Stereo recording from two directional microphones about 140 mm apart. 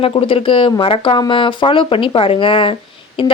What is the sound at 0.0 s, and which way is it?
Speech, 40° left (ahead or behind).